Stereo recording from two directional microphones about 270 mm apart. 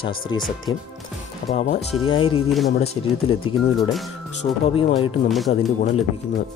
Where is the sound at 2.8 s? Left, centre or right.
Left.